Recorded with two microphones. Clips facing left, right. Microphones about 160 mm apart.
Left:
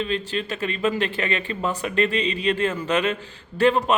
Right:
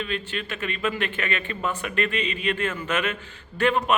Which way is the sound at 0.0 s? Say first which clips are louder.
Left 4 dB; 30° left (ahead or behind).